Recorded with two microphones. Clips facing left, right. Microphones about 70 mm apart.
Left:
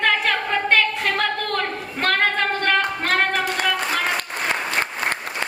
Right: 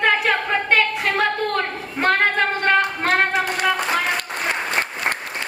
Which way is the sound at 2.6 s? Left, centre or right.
Centre.